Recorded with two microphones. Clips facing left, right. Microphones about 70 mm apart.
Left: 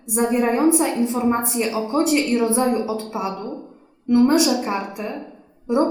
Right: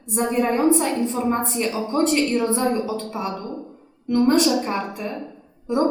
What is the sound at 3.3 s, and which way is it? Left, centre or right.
Speech, left.